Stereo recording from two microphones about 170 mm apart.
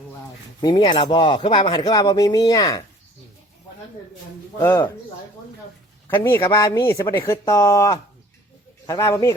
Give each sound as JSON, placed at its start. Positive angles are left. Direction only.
{"t": 0.6, "sound": "speech", "side_deg": 25}
{"t": 4.6, "sound": "speech", "side_deg": 15}
{"t": 6.1, "sound": "speech", "side_deg": 15}